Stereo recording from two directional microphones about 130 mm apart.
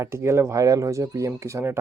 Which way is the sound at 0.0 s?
20° right (ahead or behind).